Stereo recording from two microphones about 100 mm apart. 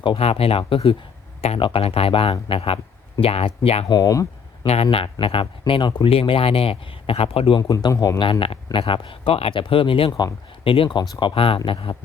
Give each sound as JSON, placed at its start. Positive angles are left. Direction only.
{"t": 0.2, "sound": "speech", "side_deg": 80}
{"t": 3.8, "sound": "speech", "side_deg": 40}
{"t": 4.6, "sound": "speech", "side_deg": 85}
{"t": 6.1, "sound": "speech", "side_deg": 65}
{"t": 7.7, "sound": "speech", "side_deg": 40}
{"t": 8.2, "sound": "speech", "side_deg": 60}
{"t": 10.1, "sound": "speech", "side_deg": 35}
{"t": 10.6, "sound": "speech", "side_deg": 65}
{"t": 11.1, "sound": "speech", "side_deg": 50}